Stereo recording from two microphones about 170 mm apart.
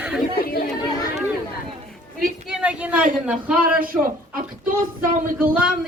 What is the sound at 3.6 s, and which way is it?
Speech, 55° right (ahead or behind).